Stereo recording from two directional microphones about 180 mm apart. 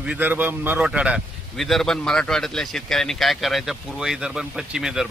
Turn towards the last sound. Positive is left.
turn(degrees=-5)  # may be behind; listen again after turning